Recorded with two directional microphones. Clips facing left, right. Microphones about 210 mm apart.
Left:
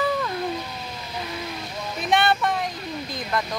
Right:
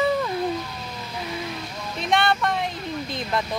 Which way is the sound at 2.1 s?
5° left (ahead or behind).